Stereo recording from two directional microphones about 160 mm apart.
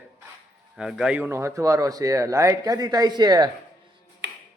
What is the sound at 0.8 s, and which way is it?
Speech, 5° right (ahead or behind).